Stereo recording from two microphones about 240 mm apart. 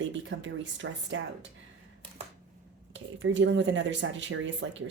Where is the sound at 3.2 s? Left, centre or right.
Right.